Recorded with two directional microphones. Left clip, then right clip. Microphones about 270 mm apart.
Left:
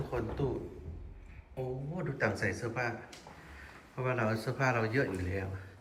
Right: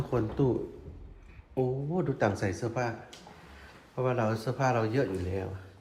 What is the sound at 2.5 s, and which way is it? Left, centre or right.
Speech, centre.